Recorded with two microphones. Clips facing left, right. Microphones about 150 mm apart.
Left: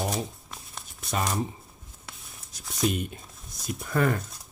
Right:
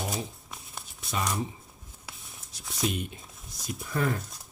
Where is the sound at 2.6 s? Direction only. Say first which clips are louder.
Left 4 dB; centre (ahead or behind).